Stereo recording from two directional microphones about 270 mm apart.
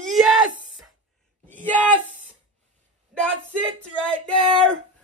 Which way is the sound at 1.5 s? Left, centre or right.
Centre.